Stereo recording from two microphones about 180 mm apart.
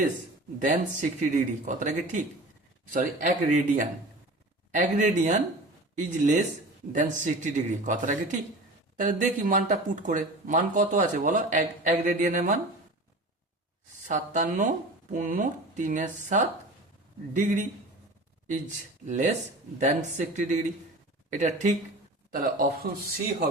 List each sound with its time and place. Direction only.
0.6 s speech: 45° right (ahead or behind)
14.1 s speech: 45° right (ahead or behind)
19.0 s speech: 40° right (ahead or behind)